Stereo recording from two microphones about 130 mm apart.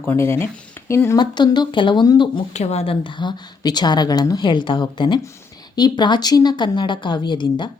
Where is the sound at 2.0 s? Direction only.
30° left (ahead or behind).